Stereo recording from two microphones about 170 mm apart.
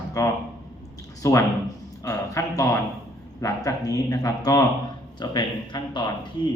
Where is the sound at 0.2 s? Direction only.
20° left (ahead or behind).